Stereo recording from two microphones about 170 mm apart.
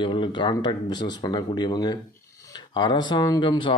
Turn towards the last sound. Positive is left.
turn(degrees=30)  # may be behind; listen again after turning